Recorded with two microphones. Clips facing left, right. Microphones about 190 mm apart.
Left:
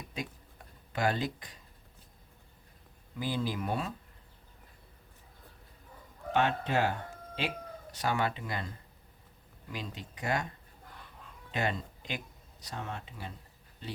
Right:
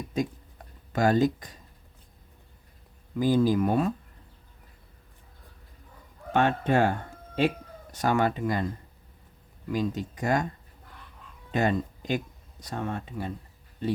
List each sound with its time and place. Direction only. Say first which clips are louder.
0.9 s speech: right 9 dB; 45° right (ahead or behind)
3.2 s speech: right 11 dB; 45° right (ahead or behind)
6.3 s speech: right 6 dB; 50° right (ahead or behind)
7.9 s speech: right 7 dB; 45° right (ahead or behind)
9.7 s speech: right 13 dB; 45° right (ahead or behind)
11.5 s speech: right 8 dB; 45° right (ahead or behind)